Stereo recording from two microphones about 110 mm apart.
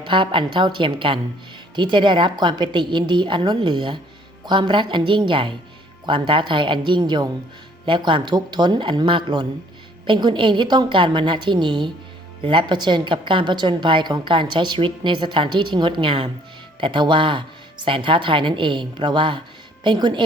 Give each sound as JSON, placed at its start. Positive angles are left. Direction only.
{"t": 0.0, "sound": "a woman's voice", "side_deg": -50}